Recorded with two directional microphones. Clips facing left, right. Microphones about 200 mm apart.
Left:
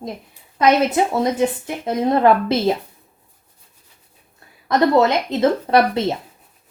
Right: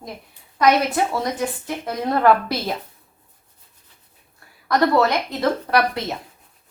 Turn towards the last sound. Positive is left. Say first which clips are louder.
# left 5 dB
turn(degrees=25)  # may be behind; listen again after turning